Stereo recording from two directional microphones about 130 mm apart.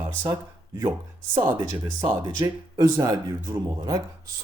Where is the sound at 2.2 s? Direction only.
30° right (ahead or behind).